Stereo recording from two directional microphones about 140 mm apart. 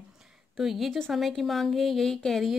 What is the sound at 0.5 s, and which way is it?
Speech, centre (ahead or behind).